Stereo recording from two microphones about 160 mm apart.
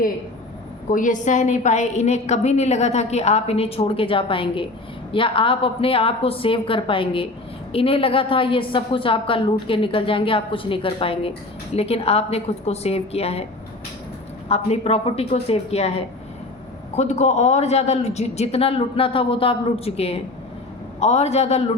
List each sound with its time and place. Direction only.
0.9 s a woman's voice: 55° left (ahead or behind); by 13.4 s 40° left (ahead or behind)
14.5 s a woman's voice: 40° left (ahead or behind)